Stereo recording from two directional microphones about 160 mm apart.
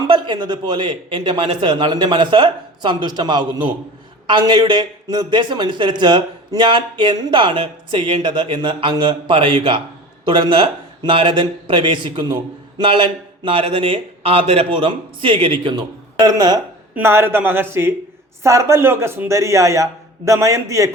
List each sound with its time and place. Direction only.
0.1 s a man's voice: 30° right (ahead or behind)
16.9 s a man's voice: 15° right (ahead or behind)